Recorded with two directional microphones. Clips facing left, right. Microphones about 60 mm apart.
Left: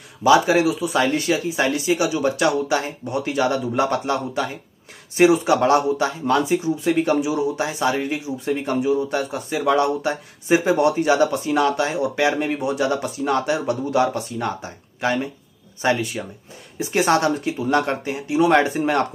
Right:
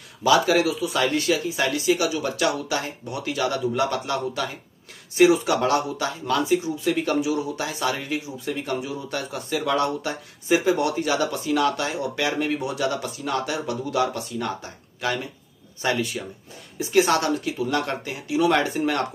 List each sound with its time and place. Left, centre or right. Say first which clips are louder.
0.2 s speech: left 3 dB; left